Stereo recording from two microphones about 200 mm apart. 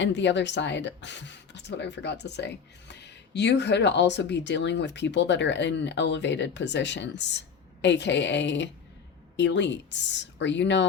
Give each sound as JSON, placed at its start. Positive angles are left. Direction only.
{"t": 0.0, "sound": "speech", "side_deg": 65}